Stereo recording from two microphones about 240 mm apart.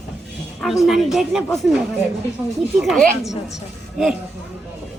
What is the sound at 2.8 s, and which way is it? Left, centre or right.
Speech, centre.